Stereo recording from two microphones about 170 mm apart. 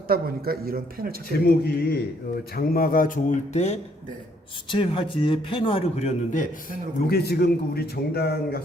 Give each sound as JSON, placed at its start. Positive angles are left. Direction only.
{"t": 0.1, "sound": "a man's voice", "side_deg": -65}
{"t": 1.5, "sound": "a man's voice", "side_deg": 70}
{"t": 2.6, "sound": "speech", "side_deg": 55}
{"t": 4.7, "sound": "a man's voice", "side_deg": 30}
{"t": 7.1, "sound": "a man's voice", "side_deg": 70}